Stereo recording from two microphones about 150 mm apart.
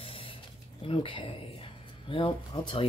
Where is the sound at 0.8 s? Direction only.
35° left (ahead or behind).